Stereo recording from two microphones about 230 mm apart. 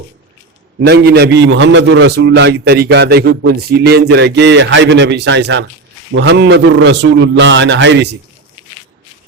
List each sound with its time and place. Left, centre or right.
0.8 s a man's voice: right